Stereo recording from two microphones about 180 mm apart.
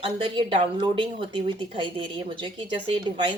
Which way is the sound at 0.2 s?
30° right (ahead or behind).